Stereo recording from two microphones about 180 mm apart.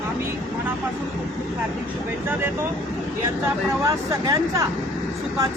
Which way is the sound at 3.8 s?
20° right (ahead or behind).